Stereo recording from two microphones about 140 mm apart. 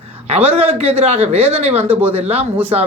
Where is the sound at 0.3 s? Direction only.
45° right (ahead or behind).